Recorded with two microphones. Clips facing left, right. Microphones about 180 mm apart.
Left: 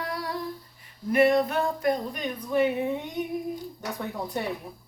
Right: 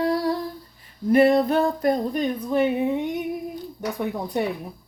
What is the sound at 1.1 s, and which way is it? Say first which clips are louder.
Speech: right 4 dB; 30° right (ahead or behind).